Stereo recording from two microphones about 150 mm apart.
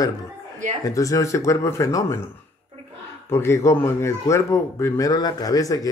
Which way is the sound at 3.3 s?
15° left (ahead or behind).